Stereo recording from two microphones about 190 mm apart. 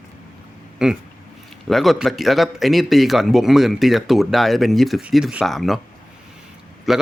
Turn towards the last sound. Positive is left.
turn(degrees=0)  # may be behind; listen again after turning